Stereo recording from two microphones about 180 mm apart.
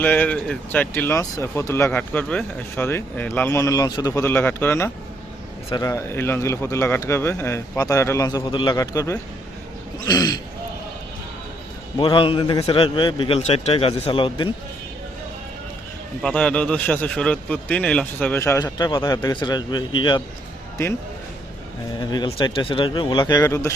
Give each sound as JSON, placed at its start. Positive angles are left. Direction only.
{"t": 0.0, "sound": "a man's voice", "side_deg": 10}
{"t": 11.9, "sound": "a man's voice", "side_deg": 30}
{"t": 16.2, "sound": "speech", "side_deg": 5}
{"t": 22.0, "sound": "a man's voice", "side_deg": 25}